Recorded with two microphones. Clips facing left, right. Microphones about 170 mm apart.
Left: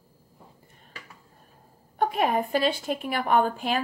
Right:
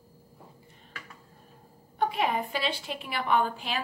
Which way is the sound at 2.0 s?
45° left (ahead or behind).